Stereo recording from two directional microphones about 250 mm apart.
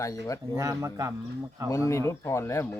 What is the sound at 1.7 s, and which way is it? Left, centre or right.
Speech, centre.